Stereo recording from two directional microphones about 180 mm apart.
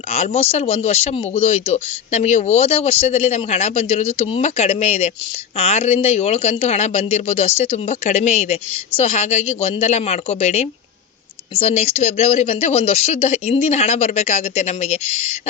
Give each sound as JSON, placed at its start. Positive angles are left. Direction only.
{"t": 0.1, "sound": "speech", "side_deg": 35}